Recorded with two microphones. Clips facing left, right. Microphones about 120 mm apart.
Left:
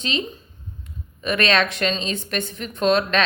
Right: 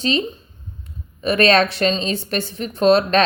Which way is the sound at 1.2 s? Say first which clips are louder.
Right 5 dB; 35° right (ahead or behind).